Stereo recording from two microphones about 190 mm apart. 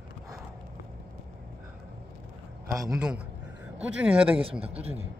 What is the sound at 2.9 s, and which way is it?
Speech, 5° right (ahead or behind).